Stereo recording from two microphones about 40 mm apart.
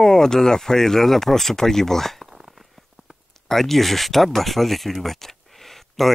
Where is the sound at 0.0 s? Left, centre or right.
Centre.